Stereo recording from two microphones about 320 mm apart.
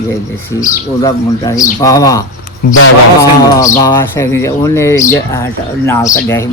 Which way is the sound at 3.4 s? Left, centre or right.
Centre.